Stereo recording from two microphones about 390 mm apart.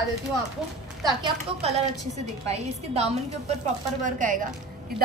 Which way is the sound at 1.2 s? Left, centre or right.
Centre.